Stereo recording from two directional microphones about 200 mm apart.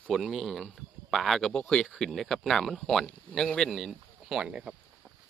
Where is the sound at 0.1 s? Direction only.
Centre (ahead or behind).